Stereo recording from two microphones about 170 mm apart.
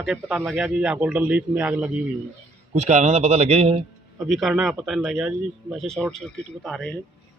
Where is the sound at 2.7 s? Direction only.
45° right (ahead or behind).